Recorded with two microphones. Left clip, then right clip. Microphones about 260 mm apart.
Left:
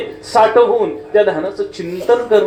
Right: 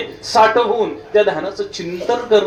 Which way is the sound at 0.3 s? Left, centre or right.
Left.